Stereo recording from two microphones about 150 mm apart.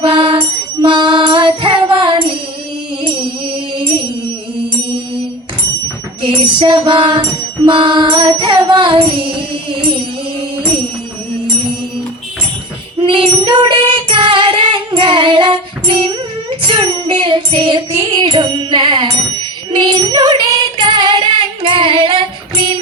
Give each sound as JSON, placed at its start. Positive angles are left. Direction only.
{"t": 0.0, "sound": "music", "side_deg": -35}
{"t": 6.2, "sound": "music", "side_deg": -35}
{"t": 13.0, "sound": "music", "side_deg": -35}